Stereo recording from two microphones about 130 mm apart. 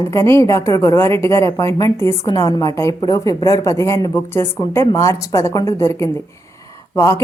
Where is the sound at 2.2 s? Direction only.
30° left (ahead or behind).